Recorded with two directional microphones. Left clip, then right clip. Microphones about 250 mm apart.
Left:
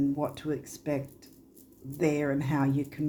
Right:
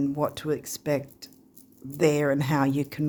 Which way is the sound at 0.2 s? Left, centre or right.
Right.